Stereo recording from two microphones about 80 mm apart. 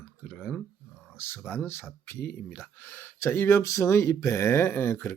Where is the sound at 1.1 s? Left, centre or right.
Left.